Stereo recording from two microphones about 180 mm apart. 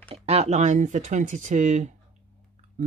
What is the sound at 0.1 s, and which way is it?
Speech, 35° right (ahead or behind).